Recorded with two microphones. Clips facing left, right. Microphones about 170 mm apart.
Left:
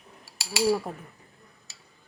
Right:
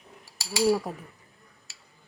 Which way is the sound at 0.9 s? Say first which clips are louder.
Right 1 dB; centre (ahead or behind).